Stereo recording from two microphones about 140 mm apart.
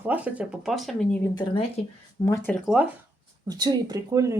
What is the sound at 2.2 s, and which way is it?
Speech, 20° left (ahead or behind).